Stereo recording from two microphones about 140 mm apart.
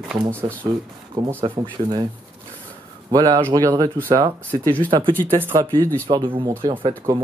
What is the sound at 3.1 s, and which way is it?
Speech, 30° right (ahead or behind).